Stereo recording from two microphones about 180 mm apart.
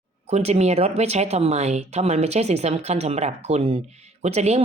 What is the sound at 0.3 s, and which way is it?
Speech, 35° right (ahead or behind).